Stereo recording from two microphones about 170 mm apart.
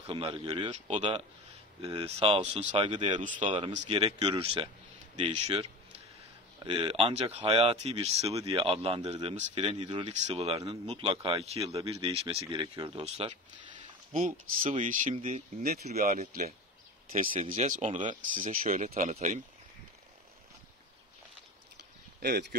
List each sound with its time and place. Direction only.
0.0 s speech: 30° right (ahead or behind)
0.7 s speech: 40° right (ahead or behind)
9.7 s speech: 30° right (ahead or behind)
14.9 s speech: 45° right (ahead or behind)
22.2 s speech: 65° right (ahead or behind)